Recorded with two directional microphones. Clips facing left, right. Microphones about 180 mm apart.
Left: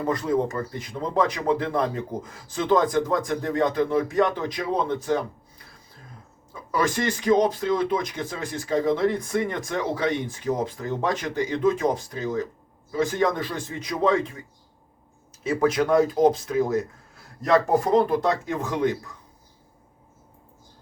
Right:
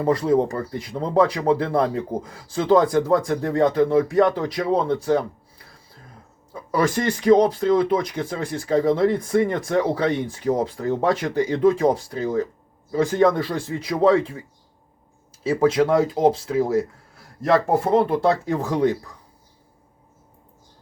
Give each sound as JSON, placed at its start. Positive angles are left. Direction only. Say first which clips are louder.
{"t": 0.0, "sound": "speech", "louder": "right 5 dB", "side_deg": -30}
{"t": 6.5, "sound": "speech", "louder": "right 4 dB", "side_deg": -30}
{"t": 15.4, "sound": "speech", "louder": "right 3 dB", "side_deg": -30}